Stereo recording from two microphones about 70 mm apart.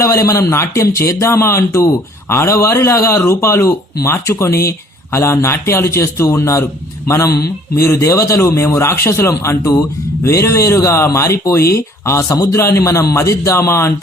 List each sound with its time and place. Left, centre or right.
0.0 s a man's voice: left
9.3 s speech: left